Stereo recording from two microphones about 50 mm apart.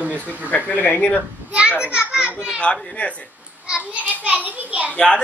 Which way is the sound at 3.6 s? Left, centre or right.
Right.